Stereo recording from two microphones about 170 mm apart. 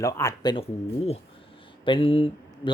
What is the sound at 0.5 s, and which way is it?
Speech, 35° left (ahead or behind).